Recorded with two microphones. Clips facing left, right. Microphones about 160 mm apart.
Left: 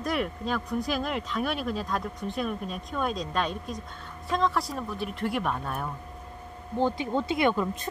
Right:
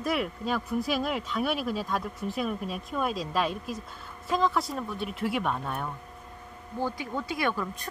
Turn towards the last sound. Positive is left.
turn(degrees=20)  # may be behind; listen again after turning